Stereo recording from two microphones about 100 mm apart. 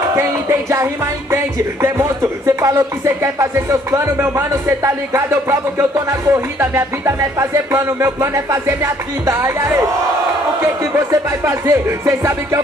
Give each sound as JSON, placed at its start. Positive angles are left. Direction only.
{"t": 0.1, "sound": "music", "side_deg": -25}
{"t": 1.3, "sound": "speech", "side_deg": -30}
{"t": 10.8, "sound": "music", "side_deg": -30}